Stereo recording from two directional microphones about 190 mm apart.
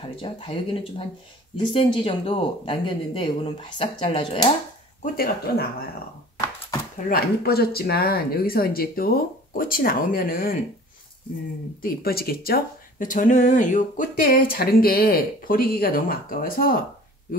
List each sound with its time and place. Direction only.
0.2 s speech: 25° left (ahead or behind)
5.0 s speech: 50° left (ahead or behind)
7.1 s speech: 55° left (ahead or behind)
11.8 s speech: 50° left (ahead or behind)